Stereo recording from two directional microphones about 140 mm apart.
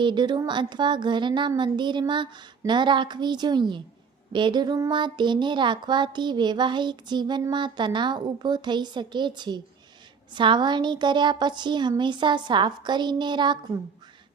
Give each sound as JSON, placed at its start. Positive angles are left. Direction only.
{"t": 0.0, "sound": "music", "side_deg": -35}